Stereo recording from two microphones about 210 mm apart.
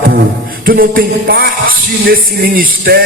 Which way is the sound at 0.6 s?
45° right (ahead or behind).